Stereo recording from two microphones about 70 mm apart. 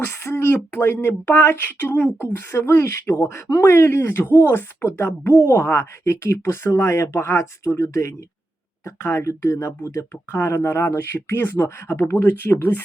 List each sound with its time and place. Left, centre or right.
0.0 s speech: left